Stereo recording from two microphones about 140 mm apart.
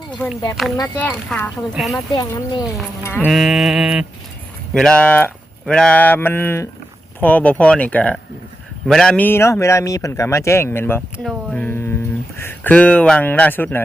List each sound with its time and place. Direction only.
0.2 s speech: 15° left (ahead or behind)
0.6 s mantra: centre (ahead or behind)
0.9 s speech: 10° left (ahead or behind)
1.9 s a man's voice: 25° left (ahead or behind)
3.0 s speech: 15° left (ahead or behind)
3.2 s mantra: centre (ahead or behind)
4.7 s a man's voice: 5° left (ahead or behind)
11.5 s mantra: 15° left (ahead or behind)
12.4 s speech: 15° left (ahead or behind)